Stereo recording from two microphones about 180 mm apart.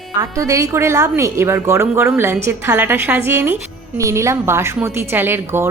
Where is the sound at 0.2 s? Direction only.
20° right (ahead or behind).